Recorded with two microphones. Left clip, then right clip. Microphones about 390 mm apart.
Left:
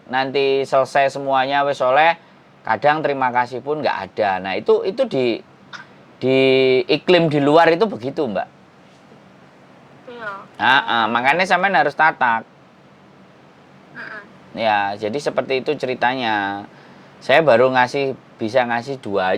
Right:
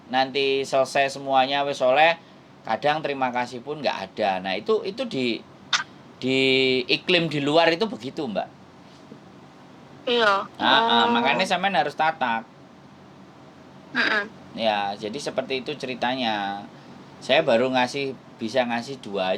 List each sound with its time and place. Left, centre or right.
0.1 s speech: left
5.7 s speech: right
6.1 s speech: left
10.1 s speech: right
10.6 s speech: left
13.9 s speech: right
14.5 s speech: left